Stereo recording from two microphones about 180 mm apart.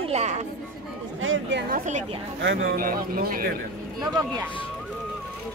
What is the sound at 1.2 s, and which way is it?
Speech, 85° right.